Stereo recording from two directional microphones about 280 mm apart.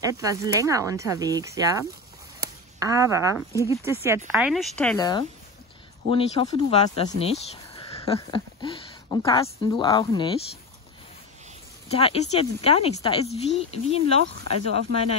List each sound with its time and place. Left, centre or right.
0.0 s speech: centre
2.8 s speech: centre
4.9 s speech: centre
11.9 s speech: left
14.2 s speech: right